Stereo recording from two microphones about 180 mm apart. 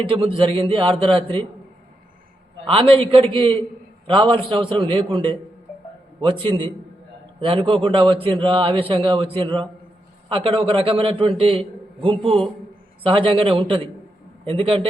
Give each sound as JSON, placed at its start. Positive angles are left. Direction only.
{"t": 0.0, "sound": "a man's voice", "side_deg": -30}
{"t": 2.6, "sound": "a man's voice", "side_deg": -30}
{"t": 13.0, "sound": "a man's voice", "side_deg": -30}